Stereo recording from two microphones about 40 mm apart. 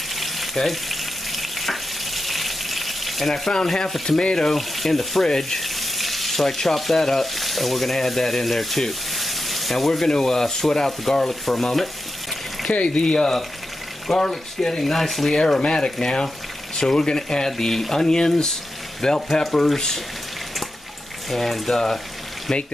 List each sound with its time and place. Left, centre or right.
0.1 s frying: centre
4.2 s speech: left
4.5 s speech: centre
12.7 s speech: left; by 15.3 s centre
15.3 s speech: centre
21.3 s speech: centre